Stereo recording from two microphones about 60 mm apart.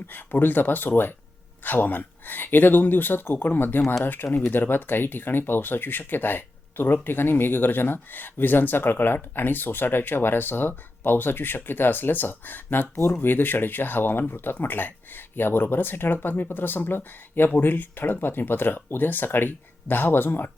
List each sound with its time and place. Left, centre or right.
0.1 s speech: left